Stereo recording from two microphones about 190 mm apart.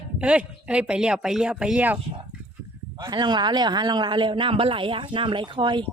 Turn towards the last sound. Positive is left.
turn(degrees=-25)  # may be behind; listen again after turning